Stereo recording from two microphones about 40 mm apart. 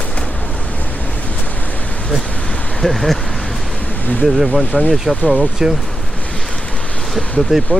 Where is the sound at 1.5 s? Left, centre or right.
Left.